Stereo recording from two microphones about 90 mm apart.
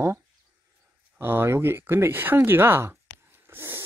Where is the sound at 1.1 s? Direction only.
25° right (ahead or behind).